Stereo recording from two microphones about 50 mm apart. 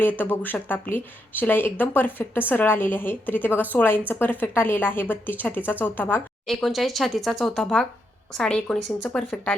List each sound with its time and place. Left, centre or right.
0.0 s a woman's voice: left
6.7 s speech: centre
7.5 s speech: centre